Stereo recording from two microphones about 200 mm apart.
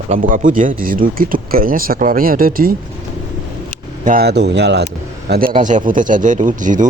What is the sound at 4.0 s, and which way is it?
Speech, 45° right (ahead or behind).